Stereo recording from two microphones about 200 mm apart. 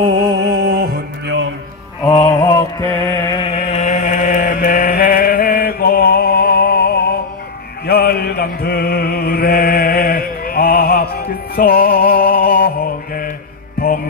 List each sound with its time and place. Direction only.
0.4 s music: 60° right (ahead or behind)
2.0 s mantra: 15° left (ahead or behind); by 13.3 s 45° left (ahead or behind)